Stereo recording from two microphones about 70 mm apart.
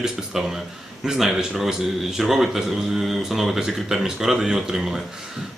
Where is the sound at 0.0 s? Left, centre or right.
Centre.